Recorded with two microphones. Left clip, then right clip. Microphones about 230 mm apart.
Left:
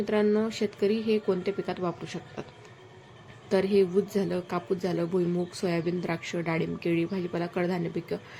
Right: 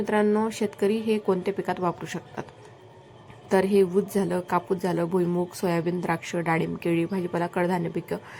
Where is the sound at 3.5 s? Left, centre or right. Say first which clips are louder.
Right 3 dB; centre.